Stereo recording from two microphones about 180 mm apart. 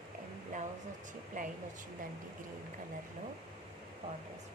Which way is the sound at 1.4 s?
45° right (ahead or behind).